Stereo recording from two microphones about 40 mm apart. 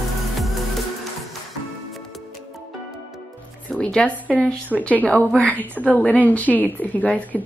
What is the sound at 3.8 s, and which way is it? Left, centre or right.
A woman's voice, left.